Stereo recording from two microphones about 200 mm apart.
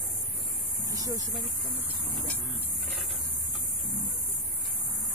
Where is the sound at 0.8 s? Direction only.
15° right (ahead or behind).